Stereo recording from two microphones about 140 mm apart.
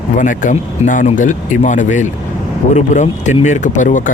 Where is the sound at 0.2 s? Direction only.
70° left (ahead or behind).